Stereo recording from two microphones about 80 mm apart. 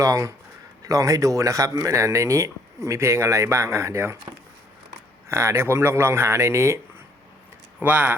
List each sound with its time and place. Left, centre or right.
0.0 s speech: right
5.3 s speech: right
7.8 s speech: right